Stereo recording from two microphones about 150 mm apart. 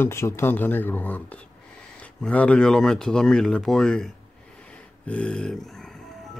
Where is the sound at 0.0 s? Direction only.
15° left (ahead or behind).